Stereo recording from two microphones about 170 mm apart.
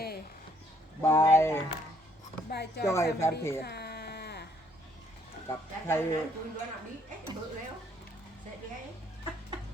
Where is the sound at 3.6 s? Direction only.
70° left (ahead or behind).